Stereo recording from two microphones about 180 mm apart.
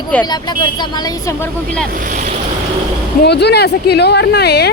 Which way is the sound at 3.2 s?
65° left (ahead or behind).